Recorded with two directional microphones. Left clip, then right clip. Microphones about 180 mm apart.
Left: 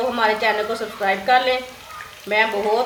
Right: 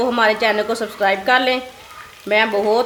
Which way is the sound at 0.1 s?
60° right (ahead or behind).